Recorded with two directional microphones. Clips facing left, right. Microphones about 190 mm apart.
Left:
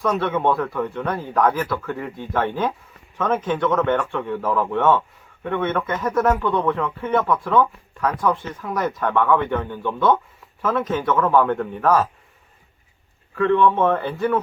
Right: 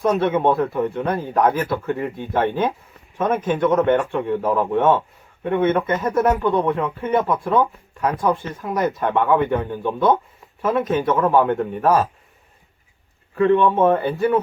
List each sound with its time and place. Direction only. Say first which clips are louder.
0.0 s speech: right 3 dB; 20° right (ahead or behind)
13.3 s speech: right 2 dB; 20° right (ahead or behind)